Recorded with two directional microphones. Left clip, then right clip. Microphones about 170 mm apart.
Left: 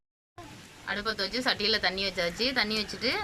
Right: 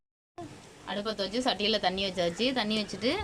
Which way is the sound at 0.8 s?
15° right (ahead or behind).